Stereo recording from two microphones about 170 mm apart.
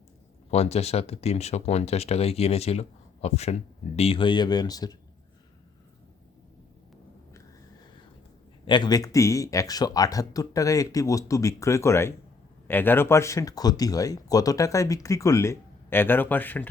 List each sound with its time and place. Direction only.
0.5 s speech: 40° left (ahead or behind); by 4.9 s 20° left (ahead or behind)
8.6 s speech: 25° left (ahead or behind); by 16.6 s 10° left (ahead or behind)